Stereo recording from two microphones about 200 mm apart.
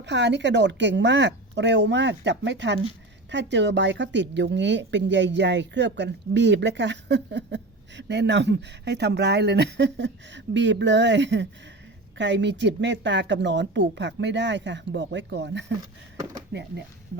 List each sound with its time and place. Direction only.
0.0 s a woman's voice: 60° right (ahead or behind)